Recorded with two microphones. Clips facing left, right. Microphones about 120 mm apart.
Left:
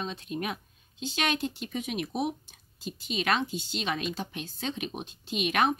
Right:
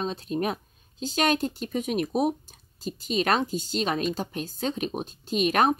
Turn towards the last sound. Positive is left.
turn(degrees=-40)  # may be behind; listen again after turning